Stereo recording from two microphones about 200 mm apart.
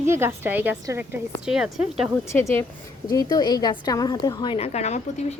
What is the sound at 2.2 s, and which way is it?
A woman's voice, 15° left (ahead or behind).